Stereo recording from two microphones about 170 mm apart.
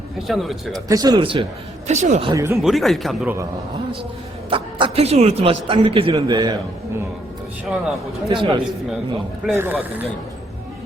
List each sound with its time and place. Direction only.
0.3 s speech: centre (ahead or behind)
0.7 s a man's voice: 20° right (ahead or behind)
1.9 s speech: 40° right (ahead or behind)
2.2 s a man's voice: 20° right (ahead or behind)
2.6 s speech: centre (ahead or behind)
4.4 s a man's voice: 30° right (ahead or behind)
7.6 s speech: 5° right (ahead or behind)
8.3 s a man's voice: 30° right (ahead or behind)
9.5 s speech: 10° right (ahead or behind)